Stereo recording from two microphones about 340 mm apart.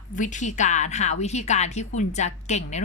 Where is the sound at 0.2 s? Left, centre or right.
Left.